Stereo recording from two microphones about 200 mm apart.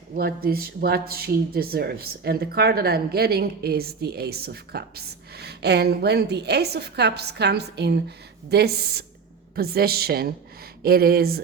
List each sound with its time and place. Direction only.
0.2 s speech: 50° right (ahead or behind)